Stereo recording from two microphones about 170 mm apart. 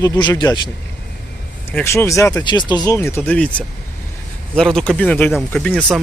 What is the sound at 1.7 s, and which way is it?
Speech, 15° left (ahead or behind).